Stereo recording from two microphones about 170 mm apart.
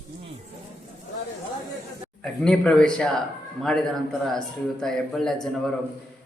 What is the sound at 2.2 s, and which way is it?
Speech, 5° left (ahead or behind).